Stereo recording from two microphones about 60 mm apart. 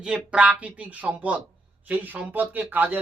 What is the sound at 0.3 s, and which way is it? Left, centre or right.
Speech, right.